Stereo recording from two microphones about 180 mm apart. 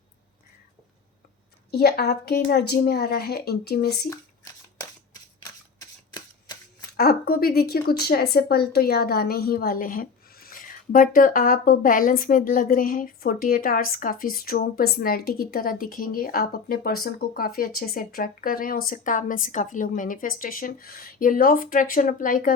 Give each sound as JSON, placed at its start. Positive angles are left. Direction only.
{"t": 1.7, "sound": "a woman's voice", "side_deg": 60}
{"t": 4.8, "sound": "shuffling cards", "side_deg": 20}
{"t": 6.9, "sound": "a woman's voice", "side_deg": 55}